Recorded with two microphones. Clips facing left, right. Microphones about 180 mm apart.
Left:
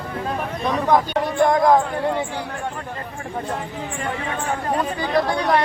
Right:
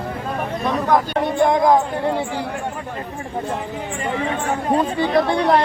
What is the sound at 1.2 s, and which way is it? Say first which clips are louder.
Speech: right 1 dB; 20° right (ahead or behind).